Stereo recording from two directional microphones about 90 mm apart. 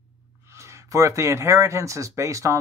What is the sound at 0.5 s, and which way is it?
Speech, 35° right (ahead or behind).